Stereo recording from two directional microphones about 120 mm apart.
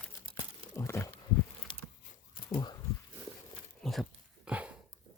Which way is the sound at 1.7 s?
40° left (ahead or behind).